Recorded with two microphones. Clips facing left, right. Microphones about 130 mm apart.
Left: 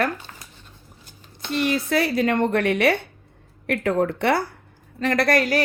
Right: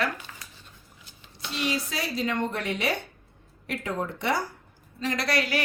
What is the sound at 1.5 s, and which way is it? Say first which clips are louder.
A woman's voice: left 8 dB; 55° left (ahead or behind).